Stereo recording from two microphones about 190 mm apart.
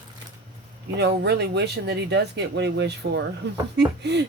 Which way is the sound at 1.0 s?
60° right (ahead or behind).